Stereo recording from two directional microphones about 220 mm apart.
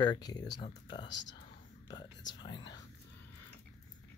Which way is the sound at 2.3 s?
20° left (ahead or behind).